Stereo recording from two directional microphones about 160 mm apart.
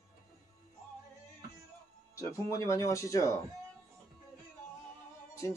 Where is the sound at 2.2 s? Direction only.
20° left (ahead or behind).